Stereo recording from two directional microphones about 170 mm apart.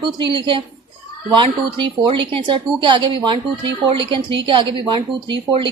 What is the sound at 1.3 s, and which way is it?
A woman's voice, 30° right (ahead or behind).